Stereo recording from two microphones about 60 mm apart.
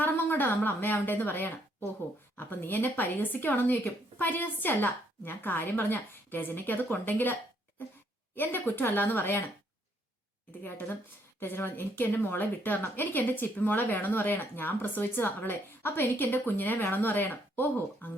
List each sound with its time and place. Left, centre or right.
0.0 s a woman's voice: left
8.4 s speech: left
10.6 s speech: left